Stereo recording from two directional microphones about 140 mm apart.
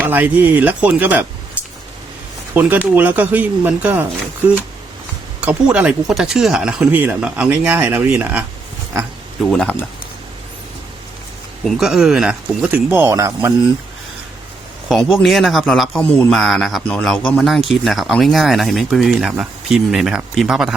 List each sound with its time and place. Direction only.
0.0 s speech: 15° right (ahead or behind)
2.6 s speech: 15° right (ahead or behind)
5.4 s speech: 10° right (ahead or behind)
8.9 s speech: 25° right (ahead or behind)
9.4 s speech: 5° left (ahead or behind)
11.6 s speech: centre (ahead or behind)
12.6 s speech: 15° right (ahead or behind)
14.8 s speech: centre (ahead or behind)